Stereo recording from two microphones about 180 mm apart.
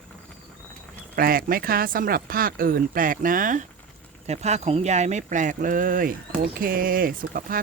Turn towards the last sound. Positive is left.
turn(degrees=-50)  # may be behind; listen again after turning